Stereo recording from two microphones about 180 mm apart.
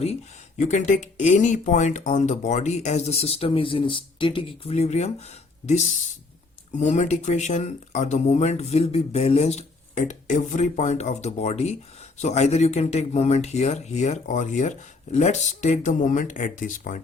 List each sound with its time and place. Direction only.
0.6 s speech: 40° left (ahead or behind)
6.7 s speech: 40° left (ahead or behind)